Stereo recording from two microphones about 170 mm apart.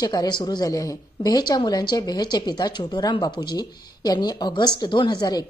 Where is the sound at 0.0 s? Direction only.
25° left (ahead or behind).